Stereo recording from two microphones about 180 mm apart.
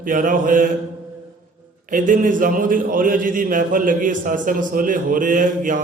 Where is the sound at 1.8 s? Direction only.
50° right (ahead or behind).